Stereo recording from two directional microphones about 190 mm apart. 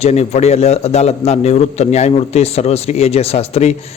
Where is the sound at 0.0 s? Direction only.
35° left (ahead or behind).